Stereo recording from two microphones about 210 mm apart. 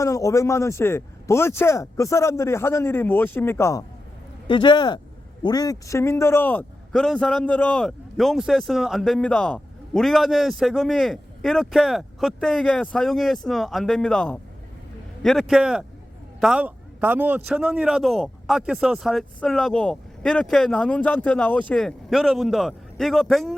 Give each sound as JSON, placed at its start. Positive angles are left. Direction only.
{"t": 0.0, "sound": "a man's voice", "side_deg": 15}